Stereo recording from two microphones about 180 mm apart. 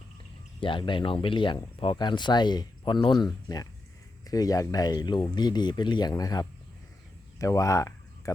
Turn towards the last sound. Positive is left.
turn(degrees=15)  # may be behind; listen again after turning